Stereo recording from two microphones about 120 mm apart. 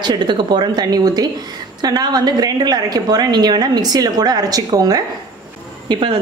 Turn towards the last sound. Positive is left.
turn(degrees=-40)  # may be behind; listen again after turning